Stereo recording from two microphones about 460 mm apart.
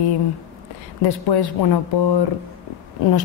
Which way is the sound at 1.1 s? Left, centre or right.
Left.